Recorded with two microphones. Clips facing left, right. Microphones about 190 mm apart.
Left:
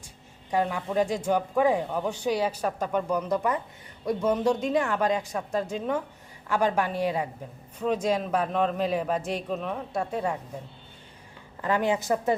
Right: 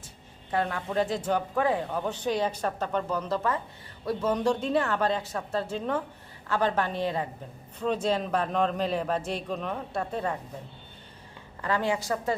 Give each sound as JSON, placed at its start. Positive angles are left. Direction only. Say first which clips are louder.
{"t": 0.5, "sound": "speech", "louder": "left 2 dB", "side_deg": 10}
{"t": 11.6, "sound": "a woman's voice", "louder": "left 2 dB", "side_deg": 20}